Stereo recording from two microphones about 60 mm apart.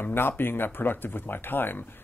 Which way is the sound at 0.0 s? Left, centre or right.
Left.